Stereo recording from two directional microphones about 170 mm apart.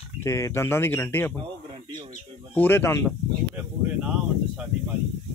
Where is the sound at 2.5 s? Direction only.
10° left (ahead or behind).